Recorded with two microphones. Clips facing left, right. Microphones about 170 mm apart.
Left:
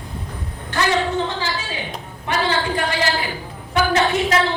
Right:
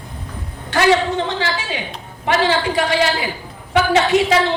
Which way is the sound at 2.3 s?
85° right.